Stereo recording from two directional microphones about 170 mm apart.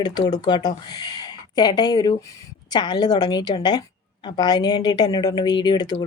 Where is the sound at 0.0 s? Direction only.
25° left (ahead or behind).